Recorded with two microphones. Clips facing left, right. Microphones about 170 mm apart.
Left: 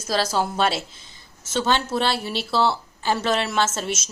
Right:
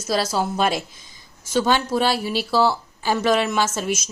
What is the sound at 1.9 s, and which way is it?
A woman's voice, 10° right (ahead or behind).